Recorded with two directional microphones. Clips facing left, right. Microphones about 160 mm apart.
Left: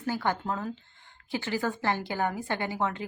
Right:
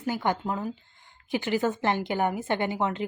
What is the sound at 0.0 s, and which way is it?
Speech, 15° right (ahead or behind).